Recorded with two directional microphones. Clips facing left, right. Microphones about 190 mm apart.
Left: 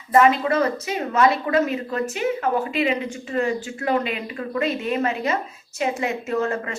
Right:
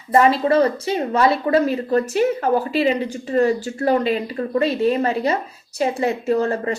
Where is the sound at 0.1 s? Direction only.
30° right (ahead or behind).